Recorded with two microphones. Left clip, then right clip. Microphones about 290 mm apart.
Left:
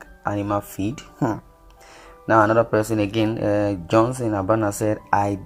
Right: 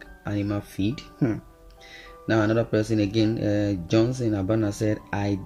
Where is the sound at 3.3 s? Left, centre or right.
Left.